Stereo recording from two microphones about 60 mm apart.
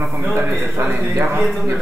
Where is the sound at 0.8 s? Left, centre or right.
Right.